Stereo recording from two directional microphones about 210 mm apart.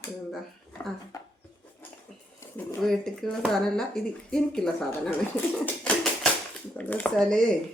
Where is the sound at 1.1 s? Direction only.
15° left (ahead or behind).